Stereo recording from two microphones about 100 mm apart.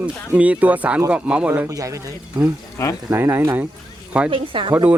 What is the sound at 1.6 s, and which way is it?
Speech, 35° right (ahead or behind).